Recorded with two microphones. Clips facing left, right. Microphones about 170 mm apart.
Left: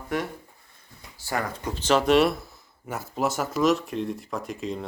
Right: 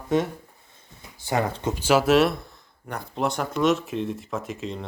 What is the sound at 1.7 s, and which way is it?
Speech, 10° right (ahead or behind).